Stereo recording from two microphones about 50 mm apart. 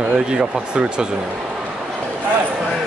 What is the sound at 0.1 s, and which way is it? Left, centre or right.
Speech, centre.